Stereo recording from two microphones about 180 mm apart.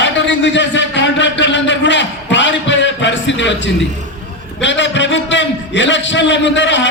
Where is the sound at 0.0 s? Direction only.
80° left.